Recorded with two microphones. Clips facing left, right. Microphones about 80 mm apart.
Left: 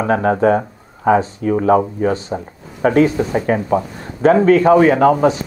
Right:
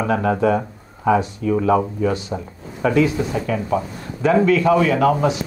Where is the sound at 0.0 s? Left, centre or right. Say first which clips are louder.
Left 4 dB; left.